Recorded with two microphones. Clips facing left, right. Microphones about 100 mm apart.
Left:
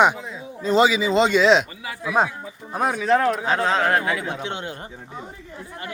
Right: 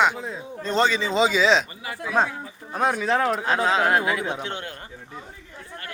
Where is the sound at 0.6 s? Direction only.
5° left (ahead or behind).